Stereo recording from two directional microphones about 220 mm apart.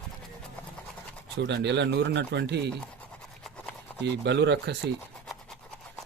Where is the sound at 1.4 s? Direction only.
55° right (ahead or behind).